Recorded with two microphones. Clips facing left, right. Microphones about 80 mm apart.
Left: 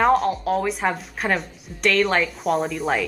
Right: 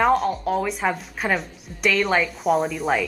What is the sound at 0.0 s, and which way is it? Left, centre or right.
Speech, centre.